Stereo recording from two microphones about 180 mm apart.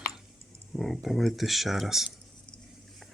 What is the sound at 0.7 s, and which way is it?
Speech, centre (ahead or behind).